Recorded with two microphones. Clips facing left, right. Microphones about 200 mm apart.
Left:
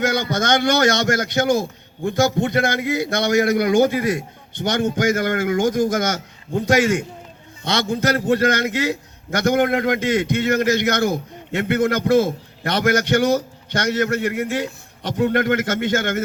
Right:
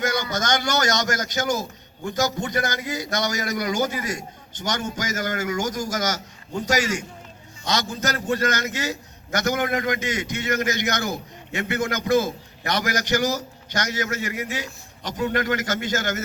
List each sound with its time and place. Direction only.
0.3 s a man's voice: 55° left (ahead or behind)